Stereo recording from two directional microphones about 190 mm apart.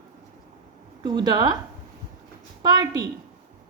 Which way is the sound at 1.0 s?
25° right (ahead or behind).